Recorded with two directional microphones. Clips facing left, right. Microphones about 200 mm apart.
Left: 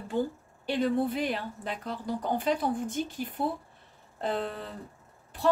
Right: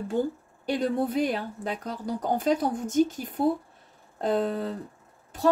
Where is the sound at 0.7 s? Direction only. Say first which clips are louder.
Right 1 dB; 45° right (ahead or behind).